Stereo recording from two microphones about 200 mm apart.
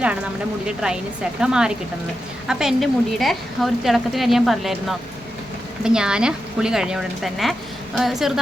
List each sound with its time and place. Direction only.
0.8 s a woman's voice: 5° right (ahead or behind)